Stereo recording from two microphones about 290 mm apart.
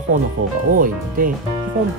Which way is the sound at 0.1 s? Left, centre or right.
Right.